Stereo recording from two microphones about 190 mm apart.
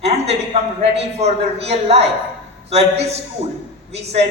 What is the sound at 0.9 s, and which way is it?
A man's voice, 35° right (ahead or behind).